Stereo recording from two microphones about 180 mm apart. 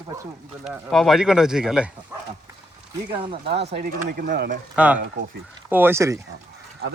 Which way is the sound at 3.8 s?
50° right (ahead or behind).